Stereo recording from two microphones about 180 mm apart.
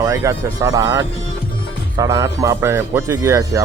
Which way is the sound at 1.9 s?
20° right (ahead or behind).